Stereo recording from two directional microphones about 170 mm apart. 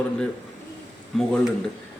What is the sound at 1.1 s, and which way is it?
Speech, centre (ahead or behind).